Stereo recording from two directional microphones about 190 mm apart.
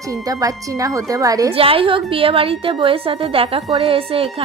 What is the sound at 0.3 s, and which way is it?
A woman's voice, 20° right (ahead or behind).